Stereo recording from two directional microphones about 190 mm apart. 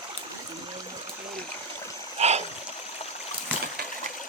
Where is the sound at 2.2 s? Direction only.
35° right (ahead or behind).